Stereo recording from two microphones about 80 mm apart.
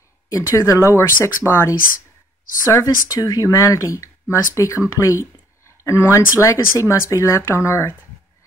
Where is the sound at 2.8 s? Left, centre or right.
Left.